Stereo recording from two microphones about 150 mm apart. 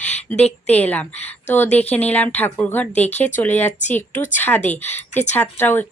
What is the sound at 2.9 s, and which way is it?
Speech, 50° left (ahead or behind).